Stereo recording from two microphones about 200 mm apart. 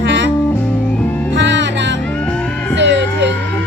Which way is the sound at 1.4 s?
65° right (ahead or behind).